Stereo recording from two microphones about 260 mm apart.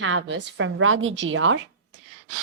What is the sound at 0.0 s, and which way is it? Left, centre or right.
A woman's voice, right.